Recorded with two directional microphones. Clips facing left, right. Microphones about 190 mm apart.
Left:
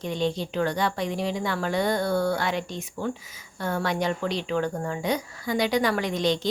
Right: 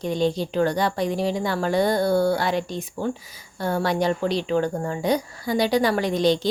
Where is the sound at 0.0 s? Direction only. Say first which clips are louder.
Right 4 dB; 35° right (ahead or behind).